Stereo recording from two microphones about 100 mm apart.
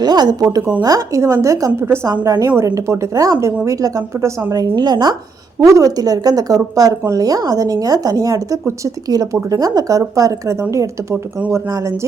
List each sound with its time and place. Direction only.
0.0 s a woman's voice: 45° right (ahead or behind)
4.5 s a woman's voice: 45° right (ahead or behind)
5.5 s speech: 35° right (ahead or behind)